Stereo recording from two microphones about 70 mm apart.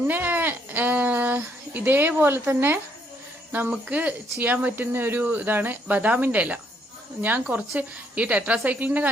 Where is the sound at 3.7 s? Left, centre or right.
Centre.